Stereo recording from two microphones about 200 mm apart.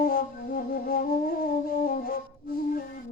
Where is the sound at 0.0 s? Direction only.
45° left (ahead or behind).